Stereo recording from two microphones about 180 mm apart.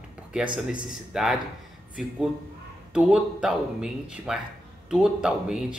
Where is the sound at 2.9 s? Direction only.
5° right (ahead or behind).